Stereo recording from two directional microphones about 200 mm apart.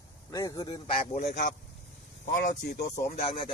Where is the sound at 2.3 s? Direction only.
50° left (ahead or behind).